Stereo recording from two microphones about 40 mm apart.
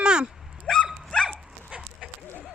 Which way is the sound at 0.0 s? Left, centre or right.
Right.